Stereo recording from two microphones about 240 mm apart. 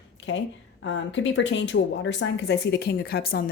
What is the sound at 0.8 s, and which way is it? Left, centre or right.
Speech, left.